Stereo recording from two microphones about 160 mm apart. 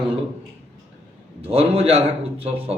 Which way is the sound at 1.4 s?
35° right (ahead or behind).